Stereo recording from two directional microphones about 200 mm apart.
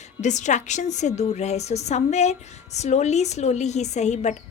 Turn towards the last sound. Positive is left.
turn(degrees=35)  # may be behind; listen again after turning